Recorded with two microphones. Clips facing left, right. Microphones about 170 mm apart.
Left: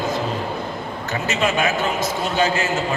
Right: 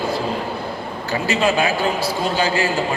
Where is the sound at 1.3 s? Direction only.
30° right (ahead or behind).